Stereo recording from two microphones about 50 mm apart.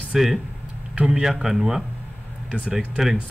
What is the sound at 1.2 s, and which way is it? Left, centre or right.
Speech, centre.